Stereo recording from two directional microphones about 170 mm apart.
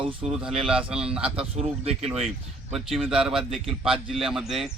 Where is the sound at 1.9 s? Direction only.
35° right (ahead or behind).